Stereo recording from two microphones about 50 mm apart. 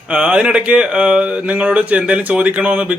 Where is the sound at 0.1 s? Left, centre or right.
Right.